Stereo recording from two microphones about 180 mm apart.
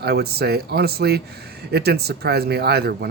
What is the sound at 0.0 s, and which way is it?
Speech, 65° right (ahead or behind).